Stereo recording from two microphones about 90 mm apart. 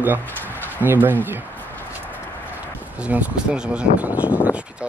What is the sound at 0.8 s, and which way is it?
Speech, 20° right (ahead or behind).